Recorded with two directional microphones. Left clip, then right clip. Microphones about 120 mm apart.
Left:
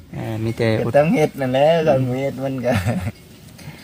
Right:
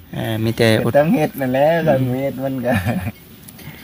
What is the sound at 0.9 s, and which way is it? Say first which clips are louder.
Speech: even; 45° left (ahead or behind).